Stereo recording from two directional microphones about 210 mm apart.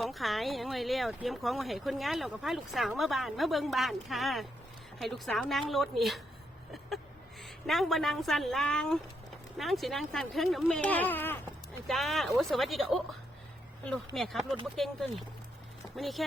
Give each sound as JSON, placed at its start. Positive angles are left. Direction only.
{"t": 0.0, "sound": "speech", "side_deg": 0}
{"t": 7.4, "sound": "speech", "side_deg": 0}
{"t": 16.0, "sound": "speech", "side_deg": 0}